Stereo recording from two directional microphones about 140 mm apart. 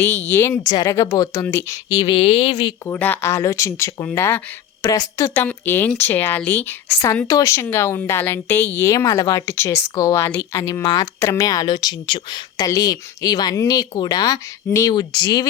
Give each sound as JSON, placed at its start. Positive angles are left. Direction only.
{"t": 0.0, "sound": "a woman's voice", "side_deg": 15}
{"t": 2.8, "sound": "a woman's voice", "side_deg": 15}
{"t": 10.8, "sound": "speech", "side_deg": 30}